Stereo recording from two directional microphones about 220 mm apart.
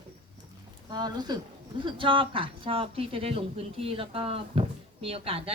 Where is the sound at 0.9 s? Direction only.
20° right (ahead or behind).